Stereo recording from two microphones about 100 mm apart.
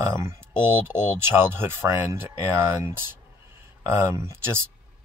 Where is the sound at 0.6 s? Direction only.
25° right (ahead or behind).